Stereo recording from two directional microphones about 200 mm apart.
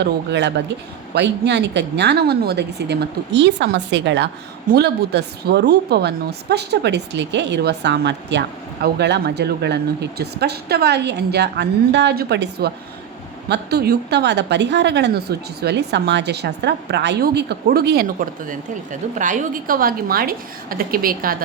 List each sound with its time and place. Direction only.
0.0 s a woman's voice: 60° right (ahead or behind)